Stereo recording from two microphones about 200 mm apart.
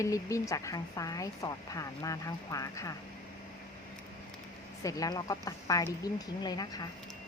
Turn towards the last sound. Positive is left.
turn(degrees=20)  # may be behind; listen again after turning